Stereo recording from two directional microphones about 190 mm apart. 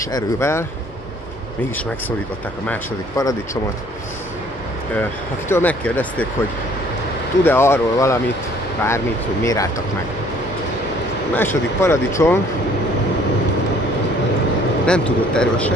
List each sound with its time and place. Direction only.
0.1 s speech: 15° left (ahead or behind)
2.7 s speech: 15° left (ahead or behind)
5.5 s speech: 10° left (ahead or behind)
7.4 s speech: 15° left (ahead or behind)
11.3 s speech: 15° left (ahead or behind)
14.9 s speech: 5° left (ahead or behind)